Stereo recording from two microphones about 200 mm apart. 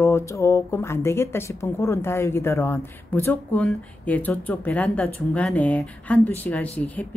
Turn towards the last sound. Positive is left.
turn(degrees=10)  # may be behind; listen again after turning